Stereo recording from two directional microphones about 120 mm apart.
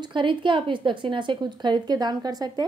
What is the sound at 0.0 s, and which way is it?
A woman's voice, 40° right (ahead or behind).